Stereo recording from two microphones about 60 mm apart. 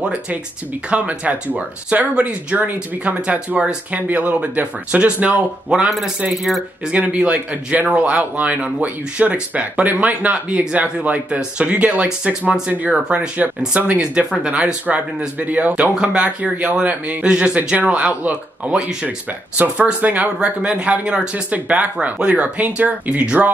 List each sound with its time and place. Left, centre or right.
0.0 s speech: right
5.9 s a man's voice: centre
6.9 s speech: centre